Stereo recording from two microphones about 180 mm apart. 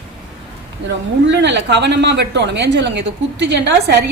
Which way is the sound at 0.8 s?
75° right (ahead or behind).